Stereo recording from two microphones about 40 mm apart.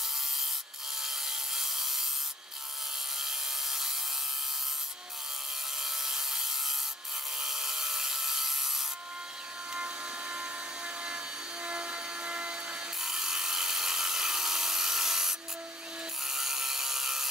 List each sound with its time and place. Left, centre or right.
1.0 s sawing: centre
3.2 s wood: centre
5.8 s wood: centre
9.8 s a sound: right
11.6 s helicopter: right
13.0 s tools: centre
16.3 s a sound: centre